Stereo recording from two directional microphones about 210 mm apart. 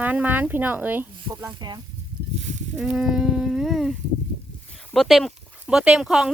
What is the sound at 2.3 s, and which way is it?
Livestock, 35° right (ahead or behind).